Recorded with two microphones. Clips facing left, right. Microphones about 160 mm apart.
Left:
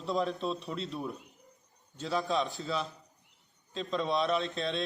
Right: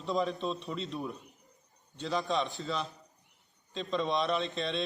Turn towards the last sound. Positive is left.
turn(degrees=0)  # may be behind; listen again after turning